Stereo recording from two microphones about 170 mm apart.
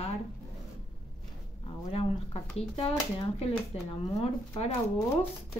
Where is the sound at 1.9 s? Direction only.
35° left (ahead or behind).